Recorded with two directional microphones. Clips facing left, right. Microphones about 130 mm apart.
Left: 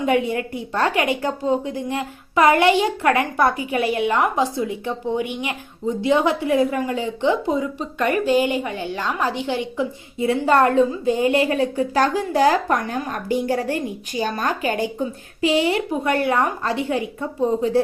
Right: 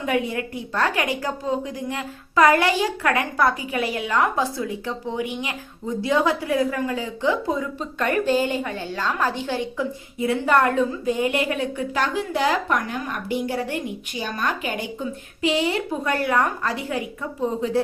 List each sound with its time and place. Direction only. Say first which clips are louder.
0.0 s a woman's voice: left 4 dB; 25° left (ahead or behind); by 14.7 s 40° left (ahead or behind)
15.4 s a woman's voice: left 3 dB; 30° left (ahead or behind)